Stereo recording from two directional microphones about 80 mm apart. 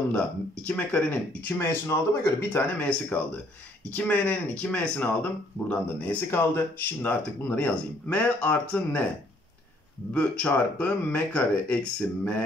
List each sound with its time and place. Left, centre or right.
0.7 s speech: left
10.1 s speech: centre